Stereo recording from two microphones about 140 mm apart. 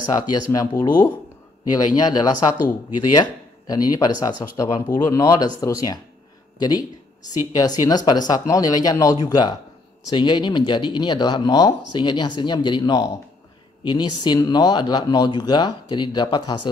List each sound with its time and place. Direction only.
0.1 s speech: 25° left (ahead or behind)